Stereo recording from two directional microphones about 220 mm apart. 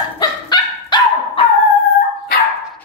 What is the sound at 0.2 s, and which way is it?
Dog, 20° left (ahead or behind).